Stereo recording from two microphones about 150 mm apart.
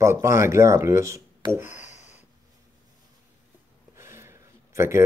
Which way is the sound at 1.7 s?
50° left (ahead or behind).